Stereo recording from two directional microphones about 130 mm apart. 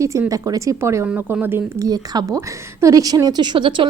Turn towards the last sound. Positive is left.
turn(degrees=-40)  # may be behind; listen again after turning